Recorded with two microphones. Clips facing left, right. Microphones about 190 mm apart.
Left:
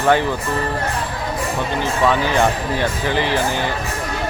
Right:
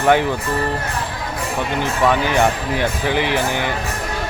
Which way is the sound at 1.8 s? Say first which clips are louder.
Even; 15° right (ahead or behind).